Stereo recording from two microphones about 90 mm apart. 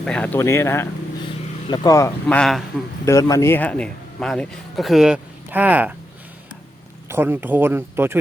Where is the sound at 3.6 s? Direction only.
15° left (ahead or behind); by 5.2 s 5° right (ahead or behind).